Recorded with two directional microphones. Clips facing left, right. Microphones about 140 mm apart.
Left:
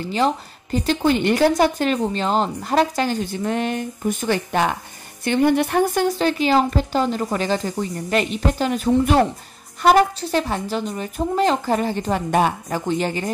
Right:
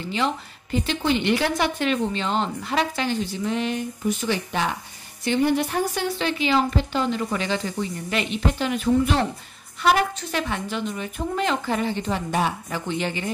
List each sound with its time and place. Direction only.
0.1 s a woman's voice: 40° left (ahead or behind); by 6.0 s 60° left (ahead or behind)
6.0 s a woman's voice: 40° left (ahead or behind)